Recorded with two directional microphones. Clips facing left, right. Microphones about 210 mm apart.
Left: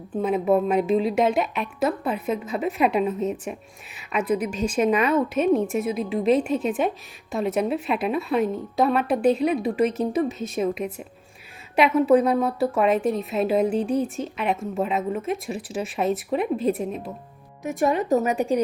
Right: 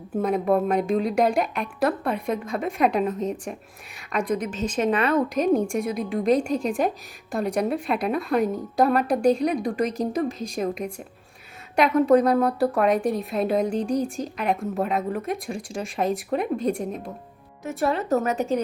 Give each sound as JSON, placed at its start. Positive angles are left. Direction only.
{"t": 0.1, "sound": "a woman's voice", "side_deg": 5}
{"t": 17.6, "sound": "speech", "side_deg": 15}